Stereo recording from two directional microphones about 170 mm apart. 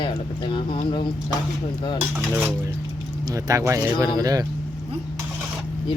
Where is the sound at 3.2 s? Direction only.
20° right (ahead or behind).